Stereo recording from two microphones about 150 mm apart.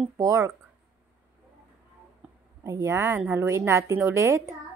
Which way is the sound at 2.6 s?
20° right (ahead or behind).